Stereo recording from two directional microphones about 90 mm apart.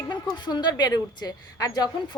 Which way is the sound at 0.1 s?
55° left (ahead or behind).